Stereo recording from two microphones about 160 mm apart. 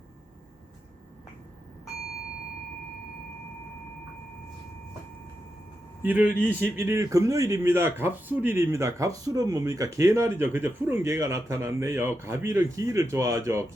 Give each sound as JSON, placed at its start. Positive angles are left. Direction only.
{"t": 6.0, "sound": "a man's voice", "side_deg": -10}